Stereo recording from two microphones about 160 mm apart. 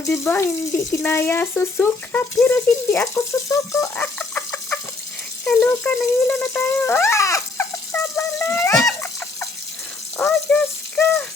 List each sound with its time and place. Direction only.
0.1 s speech: 15° left (ahead or behind)
10.2 s rattle: 10° left (ahead or behind)